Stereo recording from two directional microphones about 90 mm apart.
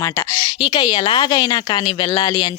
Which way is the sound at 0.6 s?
50° left (ahead or behind).